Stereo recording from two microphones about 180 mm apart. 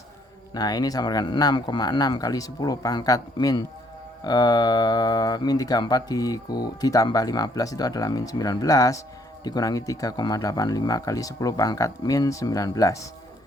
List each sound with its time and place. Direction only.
0.5 s speech: 20° left (ahead or behind)